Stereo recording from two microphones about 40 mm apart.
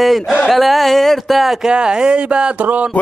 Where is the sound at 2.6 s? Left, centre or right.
Right.